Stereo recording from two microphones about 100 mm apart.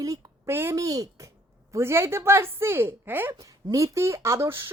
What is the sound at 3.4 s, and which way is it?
A woman's voice, 35° right (ahead or behind).